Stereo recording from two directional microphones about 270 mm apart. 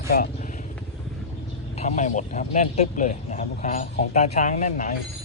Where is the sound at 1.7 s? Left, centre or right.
Left.